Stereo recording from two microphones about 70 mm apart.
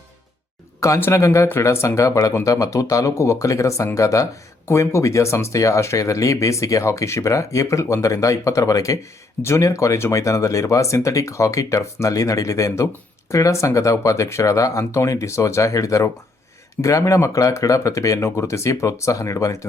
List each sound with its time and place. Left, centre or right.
1.1 s speech: left
1.5 s speech: left